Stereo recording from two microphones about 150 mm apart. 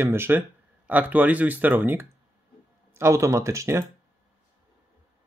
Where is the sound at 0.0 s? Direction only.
15° right (ahead or behind).